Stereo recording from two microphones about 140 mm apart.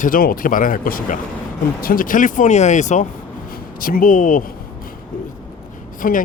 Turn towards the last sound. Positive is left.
turn(degrees=80)